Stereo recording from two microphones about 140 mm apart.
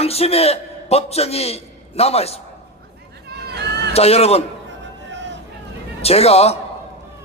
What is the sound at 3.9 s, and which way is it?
Speech, 45° left (ahead or behind).